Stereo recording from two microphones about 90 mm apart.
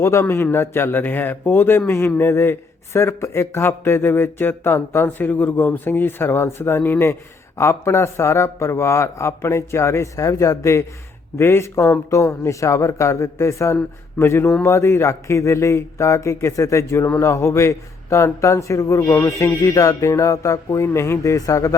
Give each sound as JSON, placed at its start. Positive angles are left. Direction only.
{"t": 0.0, "sound": "a man's voice", "side_deg": 30}